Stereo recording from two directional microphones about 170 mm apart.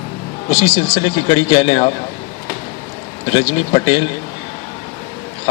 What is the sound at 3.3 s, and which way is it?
Speech, 30° left (ahead or behind).